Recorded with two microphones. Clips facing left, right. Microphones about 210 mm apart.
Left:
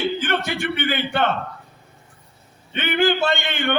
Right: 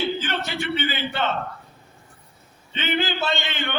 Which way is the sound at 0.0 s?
55° left (ahead or behind).